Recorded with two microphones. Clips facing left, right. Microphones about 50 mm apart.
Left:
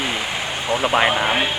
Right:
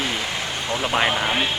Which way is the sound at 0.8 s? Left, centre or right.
Centre.